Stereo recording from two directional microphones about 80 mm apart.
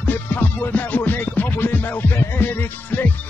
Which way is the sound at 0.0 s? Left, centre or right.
Left.